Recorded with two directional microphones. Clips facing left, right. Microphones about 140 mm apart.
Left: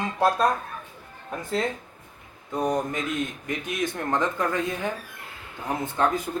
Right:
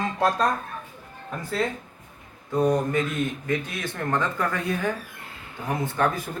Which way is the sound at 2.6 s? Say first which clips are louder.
Right 2 dB; 20° left (ahead or behind).